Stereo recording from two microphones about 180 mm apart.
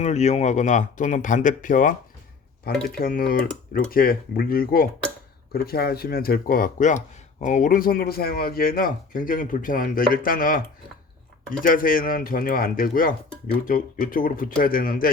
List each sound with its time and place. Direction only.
0.0 s speech: 40° left (ahead or behind)
11.6 s speech: 50° left (ahead or behind)